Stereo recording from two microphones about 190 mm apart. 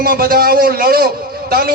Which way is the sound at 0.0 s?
50° right (ahead or behind).